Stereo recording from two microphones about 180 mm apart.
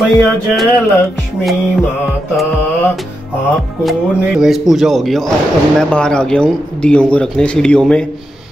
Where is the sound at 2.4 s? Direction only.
Centre (ahead or behind).